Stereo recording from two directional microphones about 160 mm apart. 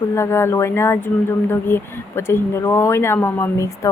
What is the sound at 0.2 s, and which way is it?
A woman's voice, 15° left (ahead or behind).